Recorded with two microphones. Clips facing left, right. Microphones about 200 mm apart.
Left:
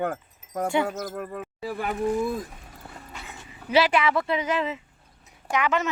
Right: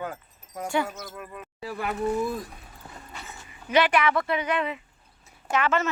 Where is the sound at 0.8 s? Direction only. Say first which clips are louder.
Left 7 dB; 50° left (ahead or behind).